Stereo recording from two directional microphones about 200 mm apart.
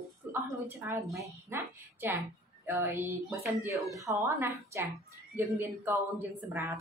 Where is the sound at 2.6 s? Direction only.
10° right (ahead or behind).